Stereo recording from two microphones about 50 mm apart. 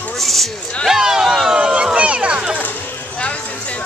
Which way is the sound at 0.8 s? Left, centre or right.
Centre.